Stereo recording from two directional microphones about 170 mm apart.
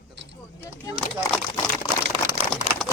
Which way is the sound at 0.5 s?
15° left (ahead or behind).